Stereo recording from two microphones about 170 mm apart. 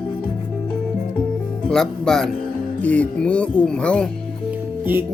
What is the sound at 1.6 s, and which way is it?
Speech, 5° left (ahead or behind).